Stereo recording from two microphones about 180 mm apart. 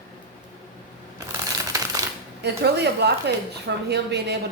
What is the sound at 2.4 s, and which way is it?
Speech, 65° right (ahead or behind).